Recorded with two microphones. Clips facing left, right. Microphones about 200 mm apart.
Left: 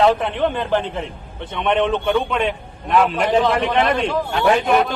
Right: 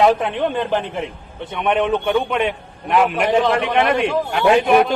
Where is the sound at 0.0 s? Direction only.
15° right (ahead or behind).